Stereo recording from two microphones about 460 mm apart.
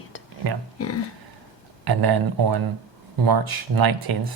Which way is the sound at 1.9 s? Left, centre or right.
Right.